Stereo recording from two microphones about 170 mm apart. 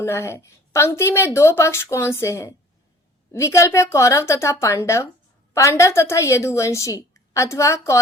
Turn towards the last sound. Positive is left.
turn(degrees=20)  # may be behind; listen again after turning